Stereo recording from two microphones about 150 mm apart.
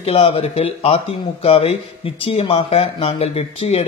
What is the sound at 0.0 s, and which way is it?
Speech, 45° left (ahead or behind).